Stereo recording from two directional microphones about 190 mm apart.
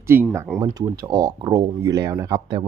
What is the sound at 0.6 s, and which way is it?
Speech, 20° right (ahead or behind).